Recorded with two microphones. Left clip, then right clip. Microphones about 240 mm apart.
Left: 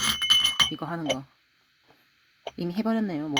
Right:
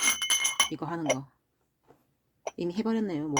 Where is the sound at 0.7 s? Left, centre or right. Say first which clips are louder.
Left 1 dB; left.